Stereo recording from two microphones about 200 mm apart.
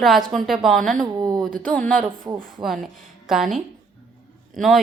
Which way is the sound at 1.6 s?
5° left (ahead or behind).